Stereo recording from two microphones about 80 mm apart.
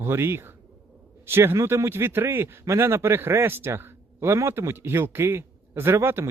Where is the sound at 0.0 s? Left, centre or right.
Right.